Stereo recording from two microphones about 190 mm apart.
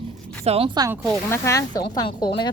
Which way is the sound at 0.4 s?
30° right (ahead or behind).